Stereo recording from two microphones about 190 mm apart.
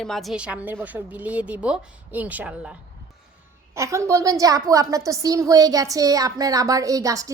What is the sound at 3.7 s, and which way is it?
A woman's voice, 15° right (ahead or behind).